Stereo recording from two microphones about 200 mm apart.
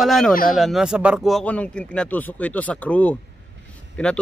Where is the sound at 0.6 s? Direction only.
Centre (ahead or behind).